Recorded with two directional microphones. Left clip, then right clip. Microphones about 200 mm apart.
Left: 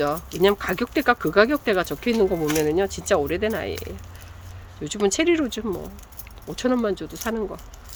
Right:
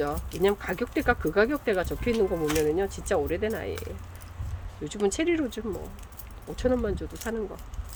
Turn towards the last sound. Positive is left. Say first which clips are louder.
# left 5 dB
turn(degrees=30)  # may be behind; listen again after turning